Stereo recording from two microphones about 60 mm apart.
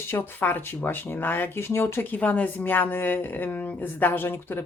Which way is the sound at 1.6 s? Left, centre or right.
Left.